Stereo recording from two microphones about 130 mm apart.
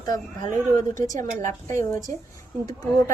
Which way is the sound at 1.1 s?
70° right (ahead or behind).